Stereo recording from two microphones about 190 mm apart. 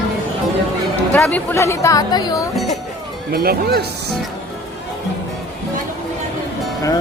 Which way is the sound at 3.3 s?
55° right (ahead or behind).